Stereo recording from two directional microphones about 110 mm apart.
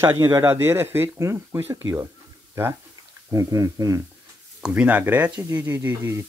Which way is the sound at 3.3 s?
30° right (ahead or behind).